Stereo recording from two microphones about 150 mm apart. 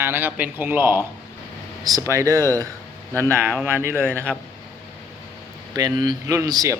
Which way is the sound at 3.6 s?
15° right (ahead or behind).